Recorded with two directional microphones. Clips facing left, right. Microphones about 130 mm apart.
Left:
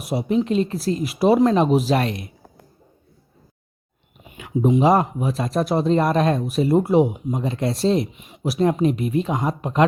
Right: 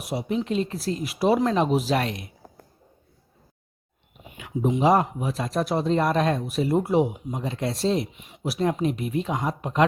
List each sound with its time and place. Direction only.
0.1 s speech: 30° left (ahead or behind)
0.8 s speech: 30° left (ahead or behind)
4.4 s speech: 40° left (ahead or behind)